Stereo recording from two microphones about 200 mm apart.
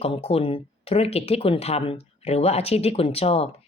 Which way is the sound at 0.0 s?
30° left (ahead or behind).